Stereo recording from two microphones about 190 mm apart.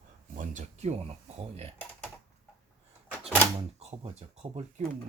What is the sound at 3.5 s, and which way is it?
Speech, 35° right (ahead or behind).